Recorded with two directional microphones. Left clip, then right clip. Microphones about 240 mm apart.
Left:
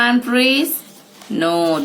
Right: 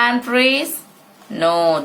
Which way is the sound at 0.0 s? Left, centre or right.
Centre.